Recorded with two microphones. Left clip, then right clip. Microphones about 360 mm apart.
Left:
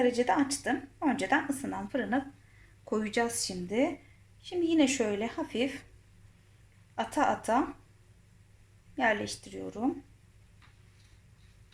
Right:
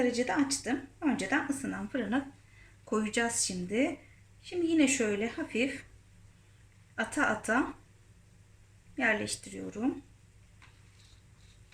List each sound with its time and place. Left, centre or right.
0.1 s a woman's voice: centre
6.9 s a woman's voice: centre
9.0 s a woman's voice: centre